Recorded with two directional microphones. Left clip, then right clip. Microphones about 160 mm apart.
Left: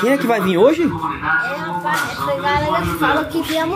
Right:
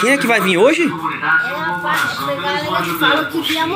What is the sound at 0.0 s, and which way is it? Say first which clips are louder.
Speech: right 2 dB; 20° left (ahead or behind).